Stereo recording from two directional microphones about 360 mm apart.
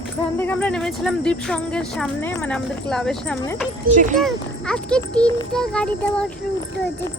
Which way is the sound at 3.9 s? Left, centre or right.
Right.